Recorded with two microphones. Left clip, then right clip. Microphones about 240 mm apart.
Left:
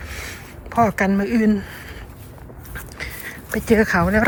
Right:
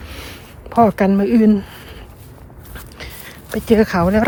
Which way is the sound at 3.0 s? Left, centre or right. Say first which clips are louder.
Left 4 dB; centre.